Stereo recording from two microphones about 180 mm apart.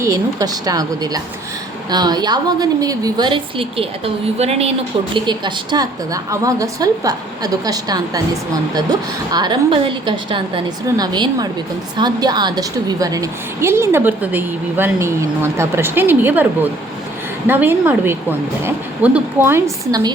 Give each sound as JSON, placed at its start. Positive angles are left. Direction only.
{"t": 0.0, "sound": "a woman's voice", "side_deg": -20}